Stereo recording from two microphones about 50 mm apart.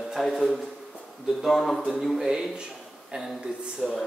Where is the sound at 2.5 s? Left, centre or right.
Centre.